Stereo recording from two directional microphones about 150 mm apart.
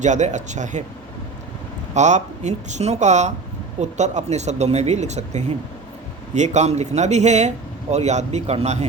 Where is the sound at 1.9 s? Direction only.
50° right (ahead or behind).